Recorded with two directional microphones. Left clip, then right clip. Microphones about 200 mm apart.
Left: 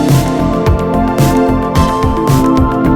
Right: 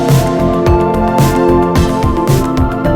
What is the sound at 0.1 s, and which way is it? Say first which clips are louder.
Music: right 1 dB; centre (ahead or behind).